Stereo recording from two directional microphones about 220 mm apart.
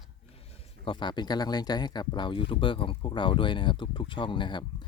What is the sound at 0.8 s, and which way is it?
Speech, 20° left (ahead or behind).